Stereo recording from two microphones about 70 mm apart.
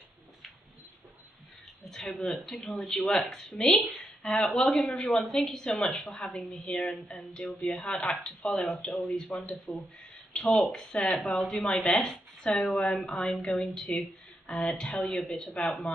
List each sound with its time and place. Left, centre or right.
1.9 s a woman's voice: centre
7.6 s speech: centre
9.7 s speech: left
10.6 s a woman's voice: centre